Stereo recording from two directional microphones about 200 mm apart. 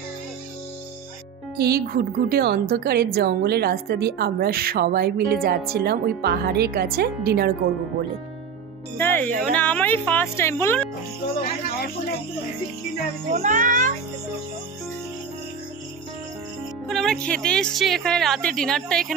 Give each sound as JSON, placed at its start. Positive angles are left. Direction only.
{"t": 1.6, "sound": "a woman's voice", "side_deg": -50}
{"t": 8.9, "sound": "speech", "side_deg": 10}
{"t": 13.3, "sound": "a child's voice", "side_deg": -35}
{"t": 16.8, "sound": "speech", "side_deg": 0}